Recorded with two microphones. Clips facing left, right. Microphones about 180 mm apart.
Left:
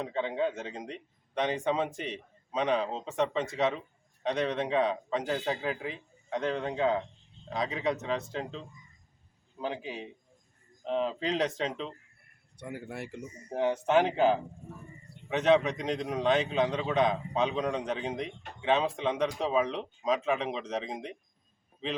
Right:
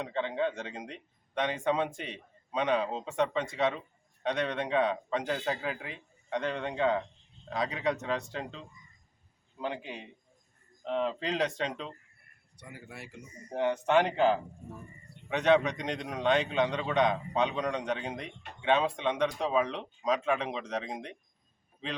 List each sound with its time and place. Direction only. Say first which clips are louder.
0.0 s speech: left 1 dB; 5° left (ahead or behind)
12.5 s speech: left 8 dB; 60° left (ahead or behind)
13.5 s speech: left 1 dB; 5° left (ahead or behind)